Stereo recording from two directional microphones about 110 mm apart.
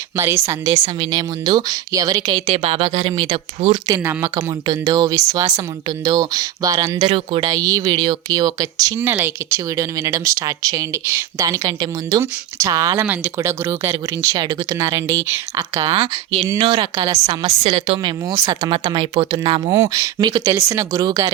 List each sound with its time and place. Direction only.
0.2 s speech: 25° right (ahead or behind)
2.5 s speech: 60° right (ahead or behind)
3.8 s speech: 30° right (ahead or behind)
7.0 s speech: 60° right (ahead or behind)
7.4 s speech: 35° right (ahead or behind)
9.0 s speech: 20° right (ahead or behind)
13.0 s speech: 20° right (ahead or behind)
14.3 s speech: 40° right (ahead or behind)
17.2 s speech: 70° right (ahead or behind)
18.0 s speech: 30° right (ahead or behind)
18.7 s speech: 45° right (ahead or behind)
19.7 s speech: 35° right (ahead or behind)